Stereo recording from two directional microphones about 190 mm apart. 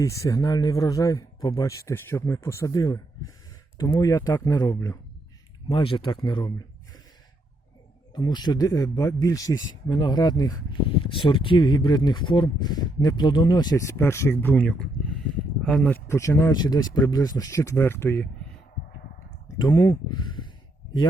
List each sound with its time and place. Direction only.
0.0 s speech: 15° left (ahead or behind)
8.1 s speech: 20° left (ahead or behind)
19.5 s speech: 20° left (ahead or behind)